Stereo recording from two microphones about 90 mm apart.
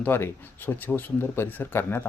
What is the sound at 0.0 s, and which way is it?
Speech, 25° left (ahead or behind).